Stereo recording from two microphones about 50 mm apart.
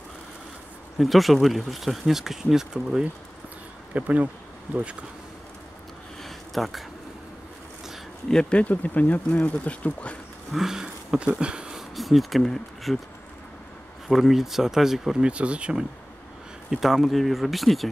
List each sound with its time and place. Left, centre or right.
0.9 s speech: centre
3.9 s speech: right
6.2 s a sound: centre
8.3 s speech: centre
10.5 s a sound: centre
11.9 s speech: centre
14.0 s speech: centre
15.2 s speech: right
16.7 s speech: centre